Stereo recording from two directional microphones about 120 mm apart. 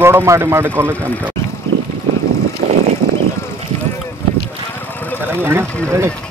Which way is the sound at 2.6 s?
80° right.